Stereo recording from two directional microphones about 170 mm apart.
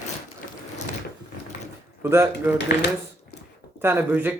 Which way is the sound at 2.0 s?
15° right (ahead or behind).